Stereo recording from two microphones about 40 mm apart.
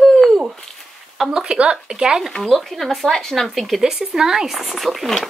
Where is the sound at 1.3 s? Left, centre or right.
Right.